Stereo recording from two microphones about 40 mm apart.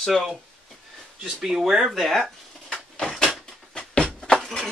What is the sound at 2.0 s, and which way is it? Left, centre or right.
Speech, centre.